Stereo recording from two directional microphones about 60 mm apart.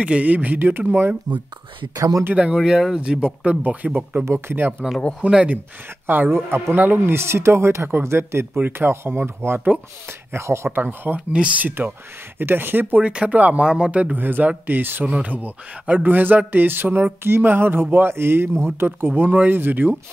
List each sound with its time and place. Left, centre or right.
0.0 s speech: right
2.0 s speech: right
2.3 s speech: centre
3.6 s speech: right
4.2 s speech: right
4.8 s speech: right
6.0 s a man's voice: right
7.2 s a man's voice: right
10.7 s a man's voice: right
11.1 s speech: centre
11.6 s a man's voice: right
13.0 s speech: centre
14.1 s a man's voice: right
15.0 s a man's voice: right